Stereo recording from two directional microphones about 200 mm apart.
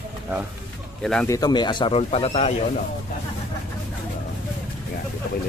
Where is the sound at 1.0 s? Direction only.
5° left (ahead or behind).